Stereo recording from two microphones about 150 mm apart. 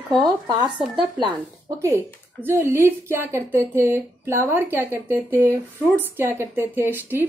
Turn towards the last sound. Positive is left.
turn(degrees=-15)  # may be behind; listen again after turning